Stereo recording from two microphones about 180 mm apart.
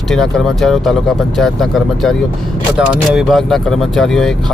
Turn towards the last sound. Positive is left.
turn(degrees=5)  # may be behind; listen again after turning